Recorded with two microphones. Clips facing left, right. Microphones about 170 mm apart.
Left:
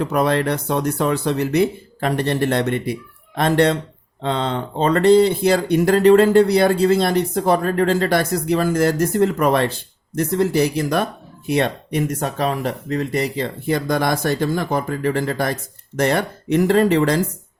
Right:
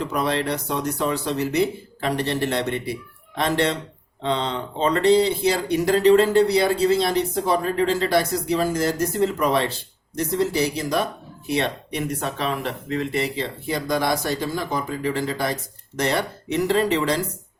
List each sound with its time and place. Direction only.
0.0 s speech: 55° left (ahead or behind)